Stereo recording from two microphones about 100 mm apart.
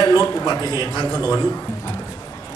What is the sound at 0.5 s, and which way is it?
Speech, 35° left (ahead or behind).